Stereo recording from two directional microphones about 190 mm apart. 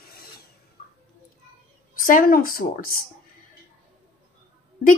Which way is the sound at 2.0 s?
45° left (ahead or behind).